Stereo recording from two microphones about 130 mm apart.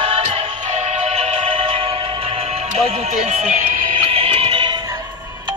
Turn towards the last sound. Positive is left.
turn(degrees=-40)  # may be behind; listen again after turning